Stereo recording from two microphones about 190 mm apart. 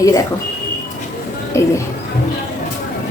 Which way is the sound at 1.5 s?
15° left (ahead or behind).